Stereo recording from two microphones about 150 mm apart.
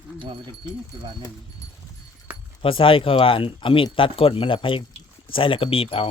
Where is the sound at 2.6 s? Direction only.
35° left (ahead or behind).